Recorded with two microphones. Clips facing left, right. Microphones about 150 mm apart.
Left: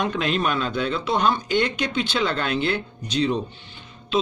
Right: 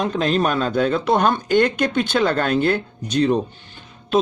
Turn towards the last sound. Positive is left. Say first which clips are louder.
# right 5 dB
turn(degrees=-45)  # may be behind; listen again after turning